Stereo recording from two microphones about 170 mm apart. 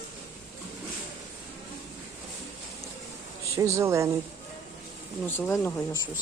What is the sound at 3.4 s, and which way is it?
Speech, 20° right (ahead or behind).